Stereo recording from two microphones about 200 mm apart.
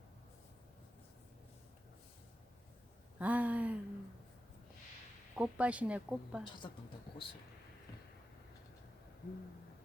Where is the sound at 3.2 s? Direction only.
5° right (ahead or behind).